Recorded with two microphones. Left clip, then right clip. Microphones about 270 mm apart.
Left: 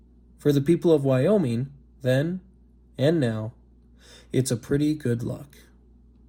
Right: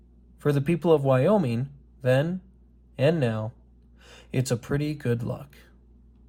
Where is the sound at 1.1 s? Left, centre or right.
Centre.